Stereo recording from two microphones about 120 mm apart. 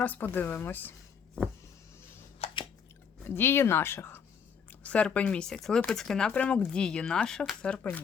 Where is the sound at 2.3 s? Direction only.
55° left (ahead or behind).